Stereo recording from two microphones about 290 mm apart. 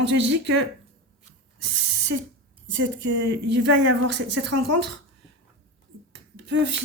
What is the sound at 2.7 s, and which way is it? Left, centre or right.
Speech, right.